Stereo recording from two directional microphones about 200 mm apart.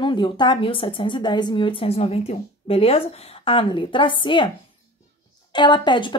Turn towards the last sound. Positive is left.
turn(degrees=25)  # may be behind; listen again after turning